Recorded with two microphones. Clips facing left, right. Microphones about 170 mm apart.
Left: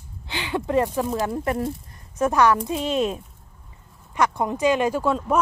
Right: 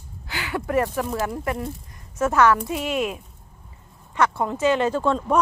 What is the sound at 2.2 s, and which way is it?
A woman's voice, 15° left (ahead or behind).